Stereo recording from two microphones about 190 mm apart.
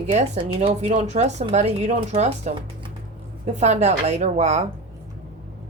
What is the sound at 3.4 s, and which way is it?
A woman's voice, 35° right (ahead or behind).